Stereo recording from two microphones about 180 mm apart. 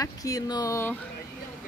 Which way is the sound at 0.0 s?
20° left (ahead or behind).